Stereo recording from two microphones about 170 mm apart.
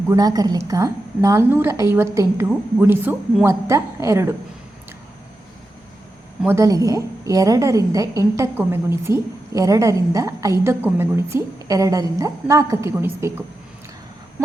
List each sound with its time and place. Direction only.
0.1 s a woman's voice: 20° right (ahead or behind)
6.4 s a woman's voice: 15° right (ahead or behind)